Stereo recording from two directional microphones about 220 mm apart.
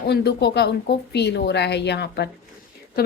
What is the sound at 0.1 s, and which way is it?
A woman's voice, 50° left (ahead or behind).